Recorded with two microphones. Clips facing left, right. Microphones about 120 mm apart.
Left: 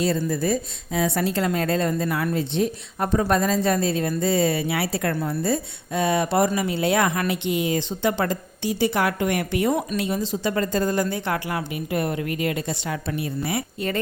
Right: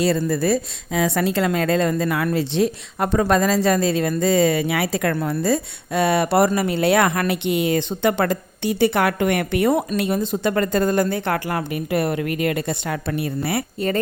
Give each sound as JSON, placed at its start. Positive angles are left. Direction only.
{"t": 0.0, "sound": "a woman's voice", "side_deg": -70}